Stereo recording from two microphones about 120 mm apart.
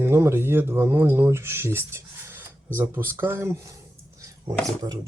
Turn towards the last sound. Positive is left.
turn(degrees=-30)  # may be behind; listen again after turning